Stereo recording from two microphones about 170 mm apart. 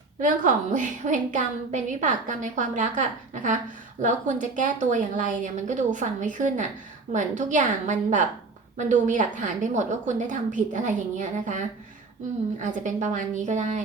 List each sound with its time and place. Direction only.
0.2 s a woman's voice: 50° right (ahead or behind)